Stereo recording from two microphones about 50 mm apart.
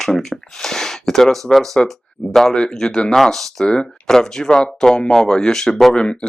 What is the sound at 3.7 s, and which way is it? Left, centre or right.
Speech, centre.